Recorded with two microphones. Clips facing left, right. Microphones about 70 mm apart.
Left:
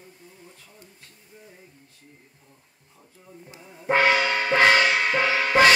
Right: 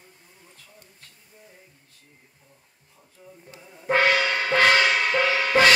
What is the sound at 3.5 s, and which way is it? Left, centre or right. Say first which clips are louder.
Music: even; centre.